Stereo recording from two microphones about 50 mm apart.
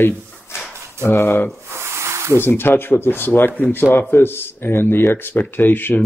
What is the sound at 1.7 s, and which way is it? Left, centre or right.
Snake, right.